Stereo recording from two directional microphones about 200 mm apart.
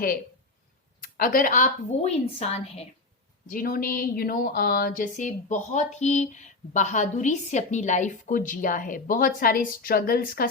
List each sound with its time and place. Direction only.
1.0 s a woman's voice: 45° left (ahead or behind)
3.5 s speech: 45° left (ahead or behind)